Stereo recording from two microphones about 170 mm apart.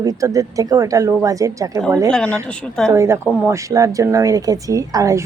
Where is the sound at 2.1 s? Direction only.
5° left (ahead or behind).